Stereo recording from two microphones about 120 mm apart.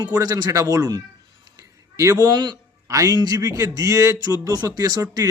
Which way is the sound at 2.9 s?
25° right (ahead or behind).